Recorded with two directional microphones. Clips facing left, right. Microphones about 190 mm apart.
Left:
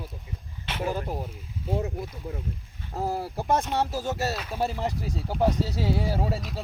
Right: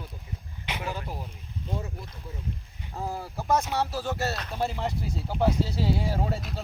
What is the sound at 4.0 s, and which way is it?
Speech, 20° left (ahead or behind).